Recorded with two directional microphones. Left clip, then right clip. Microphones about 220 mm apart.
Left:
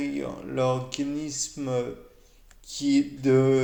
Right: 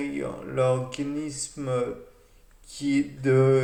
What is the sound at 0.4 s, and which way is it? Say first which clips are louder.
Speech: right 2 dB; 45° left (ahead or behind).